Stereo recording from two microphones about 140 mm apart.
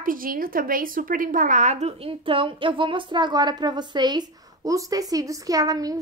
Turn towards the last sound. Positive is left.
turn(degrees=-25)  # may be behind; listen again after turning